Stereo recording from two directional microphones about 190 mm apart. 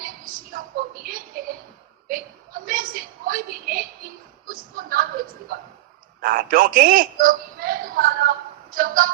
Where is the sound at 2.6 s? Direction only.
50° right (ahead or behind).